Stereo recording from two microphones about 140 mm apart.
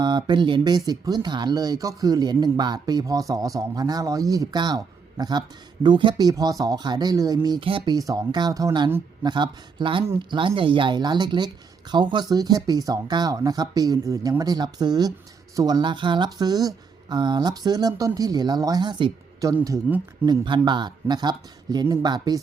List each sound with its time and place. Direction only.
0.0 s speech: 30° right (ahead or behind)